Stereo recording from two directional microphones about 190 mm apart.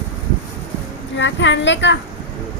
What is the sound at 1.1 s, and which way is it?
Speech, 75° left (ahead or behind).